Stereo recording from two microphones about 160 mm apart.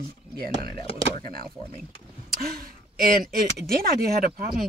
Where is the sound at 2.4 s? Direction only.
70° right (ahead or behind).